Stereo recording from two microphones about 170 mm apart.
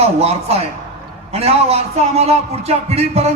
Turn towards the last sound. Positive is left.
turn(degrees=-40)  # may be behind; listen again after turning